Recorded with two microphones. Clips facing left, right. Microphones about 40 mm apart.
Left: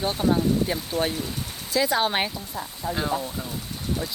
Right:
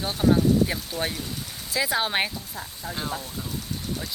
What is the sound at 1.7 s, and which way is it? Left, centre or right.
Speech, centre.